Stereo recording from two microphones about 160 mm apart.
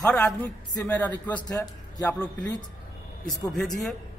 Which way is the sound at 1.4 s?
20° left (ahead or behind).